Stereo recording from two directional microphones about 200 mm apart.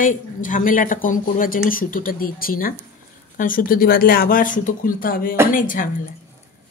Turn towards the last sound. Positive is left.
turn(degrees=40)  # may be behind; listen again after turning